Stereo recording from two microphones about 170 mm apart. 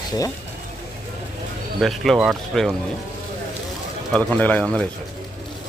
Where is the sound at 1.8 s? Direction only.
Centre (ahead or behind).